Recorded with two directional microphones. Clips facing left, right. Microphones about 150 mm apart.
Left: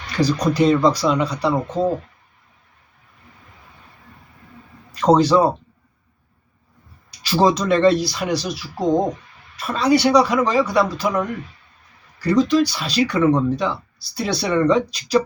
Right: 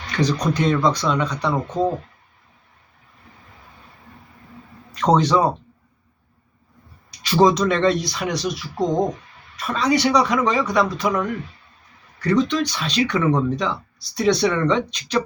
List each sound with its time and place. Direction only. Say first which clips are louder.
0.1 s speech: left 2 dB; 5° left (ahead or behind)
4.9 s speech: left 3 dB; 5° left (ahead or behind)
7.1 s speech: right 1 dB; centre (ahead or behind)